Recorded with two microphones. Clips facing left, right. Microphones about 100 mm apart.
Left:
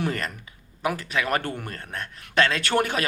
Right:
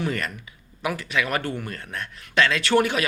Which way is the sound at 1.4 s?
50° left (ahead or behind).